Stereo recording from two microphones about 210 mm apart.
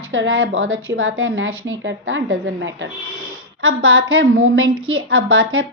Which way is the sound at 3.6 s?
75° right (ahead or behind).